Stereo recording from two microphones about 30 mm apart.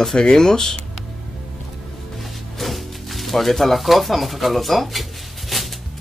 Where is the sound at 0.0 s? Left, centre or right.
Left.